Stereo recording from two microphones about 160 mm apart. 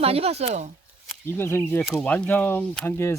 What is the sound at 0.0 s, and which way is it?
Speech, 40° right (ahead or behind).